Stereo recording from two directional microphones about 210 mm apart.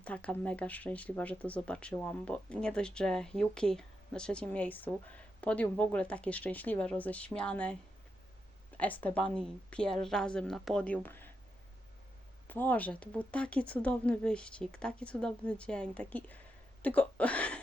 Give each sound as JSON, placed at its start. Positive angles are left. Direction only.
{"t": 0.0, "sound": "speech", "side_deg": 5}
{"t": 8.8, "sound": "speech", "side_deg": 5}
{"t": 12.5, "sound": "speech", "side_deg": 10}
{"t": 16.8, "sound": "a sound", "side_deg": 5}